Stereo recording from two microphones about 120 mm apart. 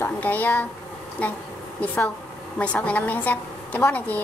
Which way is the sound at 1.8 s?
10° left (ahead or behind).